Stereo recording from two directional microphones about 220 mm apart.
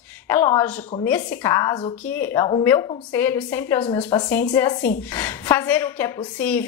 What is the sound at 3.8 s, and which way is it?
A woman's voice, 25° left (ahead or behind).